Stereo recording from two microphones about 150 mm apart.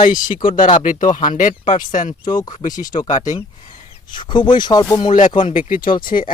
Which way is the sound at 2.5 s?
60° left (ahead or behind).